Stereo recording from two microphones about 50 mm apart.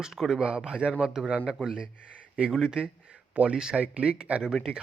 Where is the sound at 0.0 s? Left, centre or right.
Centre.